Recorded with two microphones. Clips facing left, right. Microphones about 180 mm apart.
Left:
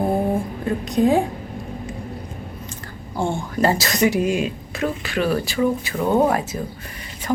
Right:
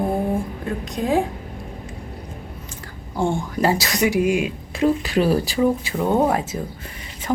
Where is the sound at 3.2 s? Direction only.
15° right (ahead or behind).